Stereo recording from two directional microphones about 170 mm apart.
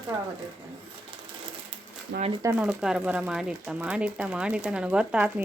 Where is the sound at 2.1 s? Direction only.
60° right (ahead or behind).